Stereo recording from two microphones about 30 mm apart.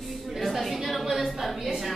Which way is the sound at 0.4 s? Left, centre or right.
Centre.